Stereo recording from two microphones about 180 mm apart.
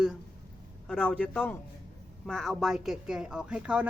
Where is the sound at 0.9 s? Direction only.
5° left (ahead or behind).